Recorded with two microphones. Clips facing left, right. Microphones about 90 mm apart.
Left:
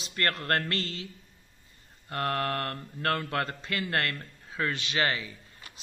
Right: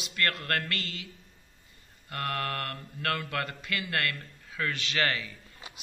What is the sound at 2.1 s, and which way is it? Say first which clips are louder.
Speech: left 3 dB; 25° left (ahead or behind).